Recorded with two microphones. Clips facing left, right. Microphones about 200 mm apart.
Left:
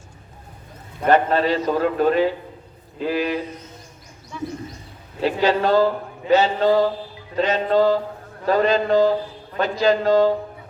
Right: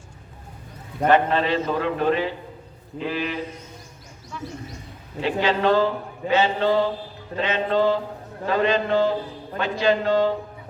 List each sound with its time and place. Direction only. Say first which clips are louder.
1.0 s a man's voice: left 2 dB; 40° left (ahead or behind)
5.2 s a man's voice: left 2 dB; 40° left (ahead or behind)